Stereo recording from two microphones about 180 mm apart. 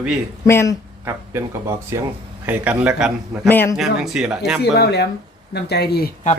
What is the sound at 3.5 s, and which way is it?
Speech, 10° left (ahead or behind).